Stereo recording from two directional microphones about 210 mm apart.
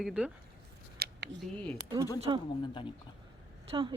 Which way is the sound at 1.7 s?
20° right (ahead or behind).